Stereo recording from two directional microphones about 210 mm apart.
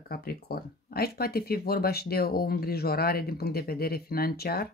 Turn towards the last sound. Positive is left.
turn(degrees=45)  # may be behind; listen again after turning